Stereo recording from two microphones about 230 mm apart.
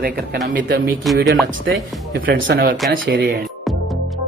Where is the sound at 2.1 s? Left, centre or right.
Right.